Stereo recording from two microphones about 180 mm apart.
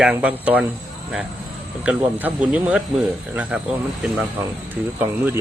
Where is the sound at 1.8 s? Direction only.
10° right (ahead or behind).